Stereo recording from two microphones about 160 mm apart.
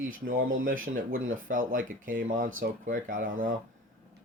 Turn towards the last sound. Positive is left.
turn(degrees=-60)  # may be behind; listen again after turning